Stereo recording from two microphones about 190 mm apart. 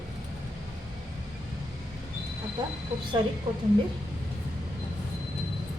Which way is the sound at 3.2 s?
25° right (ahead or behind).